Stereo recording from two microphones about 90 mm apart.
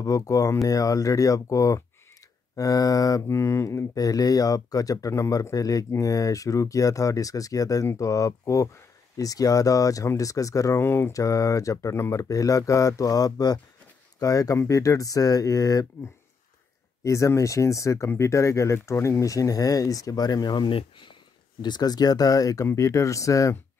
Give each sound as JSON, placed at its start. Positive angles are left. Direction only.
{"t": 0.0, "sound": "speech", "side_deg": 40}
{"t": 10.8, "sound": "speech", "side_deg": 25}
{"t": 17.0, "sound": "speech", "side_deg": 35}
{"t": 20.7, "sound": "speech", "side_deg": 65}